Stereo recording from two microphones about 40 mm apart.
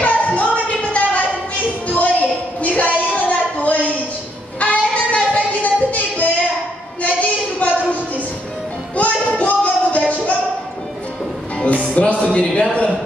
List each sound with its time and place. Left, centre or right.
0.0 s music: left
1.9 s a sound: left
8.9 s music: left
11.6 s music: left